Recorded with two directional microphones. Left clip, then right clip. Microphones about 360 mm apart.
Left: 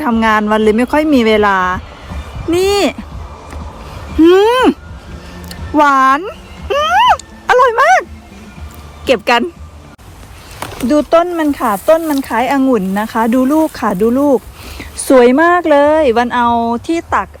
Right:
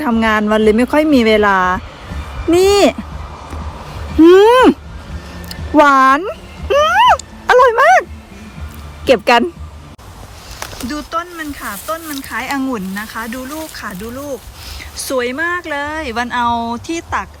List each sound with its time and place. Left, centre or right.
0.0 s a woman's voice: centre
4.2 s a woman's voice: centre
5.5 s a sound: centre
9.0 s a woman's voice: centre
10.6 s a sound: centre
10.8 s a woman's voice: centre